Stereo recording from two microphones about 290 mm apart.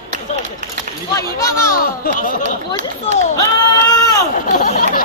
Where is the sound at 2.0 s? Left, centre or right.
Left.